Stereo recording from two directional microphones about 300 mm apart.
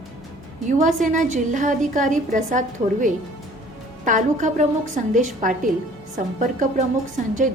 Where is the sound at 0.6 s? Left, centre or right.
Right.